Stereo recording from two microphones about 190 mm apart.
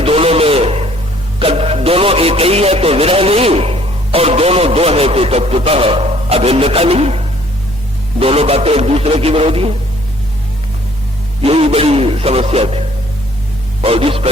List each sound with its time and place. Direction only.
0.0 s a sound: 30° right (ahead or behind)
1.4 s a man's voice: 30° right (ahead or behind)
11.4 s a man's voice: 30° right (ahead or behind)
13.8 s a man's voice: 30° right (ahead or behind)